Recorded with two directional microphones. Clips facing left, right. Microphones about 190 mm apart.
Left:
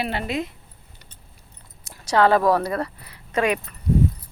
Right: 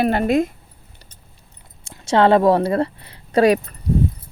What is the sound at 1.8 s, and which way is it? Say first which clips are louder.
Speech: right 3 dB; 25° right (ahead or behind).